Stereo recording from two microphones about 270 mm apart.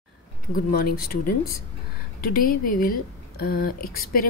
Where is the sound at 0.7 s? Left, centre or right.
Left.